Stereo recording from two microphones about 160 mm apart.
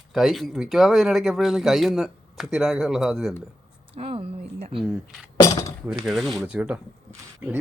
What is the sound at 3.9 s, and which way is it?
Speech, 35° right (ahead or behind).